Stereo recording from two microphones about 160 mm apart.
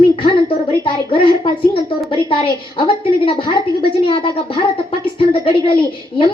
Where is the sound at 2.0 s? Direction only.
35° left (ahead or behind).